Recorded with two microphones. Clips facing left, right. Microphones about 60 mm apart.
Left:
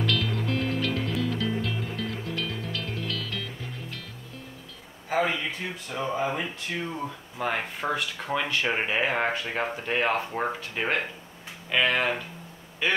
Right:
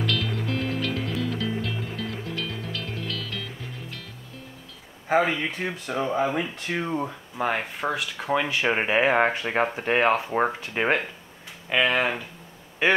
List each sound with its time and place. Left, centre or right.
0.0 s music: centre
5.1 s speech: right
7.3 s speech: centre
8.3 s speech: centre; by 11.0 s right
11.7 s speech: centre